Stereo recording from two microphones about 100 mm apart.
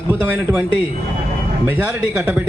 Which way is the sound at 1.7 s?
20° right (ahead or behind).